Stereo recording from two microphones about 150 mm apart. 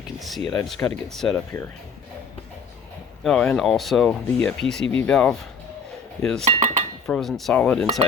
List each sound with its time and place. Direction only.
0.3 s speech: centre (ahead or behind)
3.2 s speech: 5° left (ahead or behind)
6.4 s speech: 50° right (ahead or behind)
7.1 s speech: centre (ahead or behind)